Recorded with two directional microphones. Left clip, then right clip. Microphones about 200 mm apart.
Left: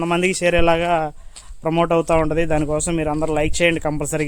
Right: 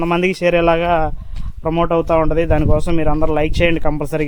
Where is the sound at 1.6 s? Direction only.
30° left (ahead or behind).